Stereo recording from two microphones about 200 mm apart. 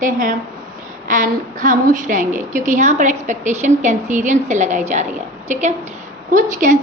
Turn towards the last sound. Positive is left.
turn(degrees=-40)  # may be behind; listen again after turning